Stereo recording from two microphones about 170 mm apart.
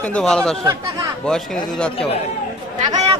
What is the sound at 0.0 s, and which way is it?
Speech, 5° left (ahead or behind).